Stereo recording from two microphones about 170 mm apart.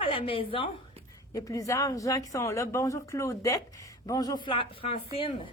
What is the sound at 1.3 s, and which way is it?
Speech, 20° left (ahead or behind).